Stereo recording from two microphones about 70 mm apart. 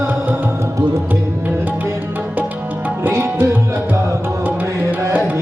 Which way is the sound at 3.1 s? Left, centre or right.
Right.